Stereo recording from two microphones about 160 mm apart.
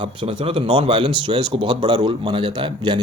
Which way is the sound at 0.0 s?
35° right (ahead or behind).